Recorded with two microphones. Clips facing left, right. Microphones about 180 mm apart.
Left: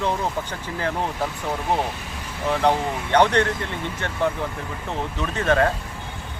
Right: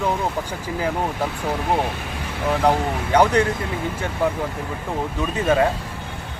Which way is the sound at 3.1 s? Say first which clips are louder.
Right 1 dB; 10° right (ahead or behind).